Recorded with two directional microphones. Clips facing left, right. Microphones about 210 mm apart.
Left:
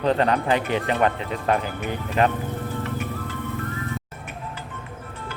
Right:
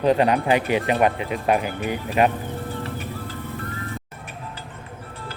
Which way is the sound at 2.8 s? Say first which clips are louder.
Left 2 dB; 35° right (ahead or behind).